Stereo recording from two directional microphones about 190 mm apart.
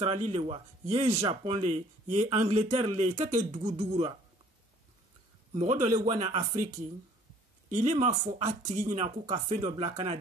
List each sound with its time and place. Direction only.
0.0 s a man's voice: 30° right (ahead or behind)
5.5 s speech: 35° right (ahead or behind)
7.7 s speech: 35° right (ahead or behind)